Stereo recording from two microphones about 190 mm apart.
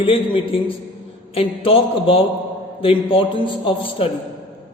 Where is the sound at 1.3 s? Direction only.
30° left (ahead or behind).